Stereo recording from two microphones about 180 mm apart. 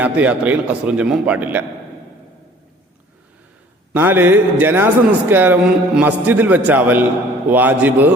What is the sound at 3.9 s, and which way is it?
A man's voice, 10° right (ahead or behind).